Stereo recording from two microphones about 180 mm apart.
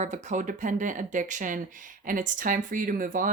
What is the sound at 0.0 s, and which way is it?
Speech, 40° right (ahead or behind).